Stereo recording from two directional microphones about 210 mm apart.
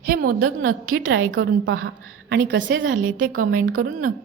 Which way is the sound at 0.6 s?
90° right.